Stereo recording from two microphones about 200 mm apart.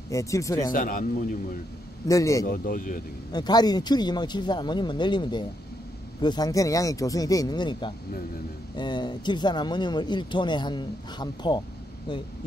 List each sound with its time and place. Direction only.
0.1 s speech: 15° left (ahead or behind)
0.7 s speech: 45° left (ahead or behind)
2.0 s speech: 15° left (ahead or behind)
2.4 s speech: 45° left (ahead or behind)
3.3 s speech: 20° left (ahead or behind)